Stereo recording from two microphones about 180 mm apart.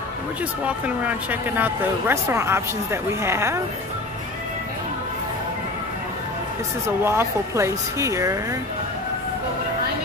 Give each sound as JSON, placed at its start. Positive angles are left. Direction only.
{"t": 0.7, "sound": "a woman's voice", "side_deg": -5}
{"t": 7.1, "sound": "a woman's voice", "side_deg": -15}